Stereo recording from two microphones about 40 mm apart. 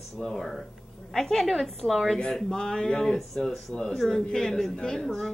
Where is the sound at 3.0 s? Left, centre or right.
Centre.